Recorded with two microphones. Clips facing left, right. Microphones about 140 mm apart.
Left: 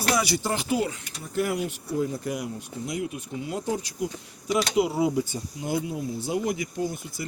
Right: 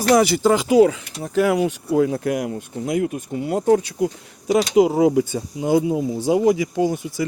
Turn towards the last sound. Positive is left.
turn(degrees=-90)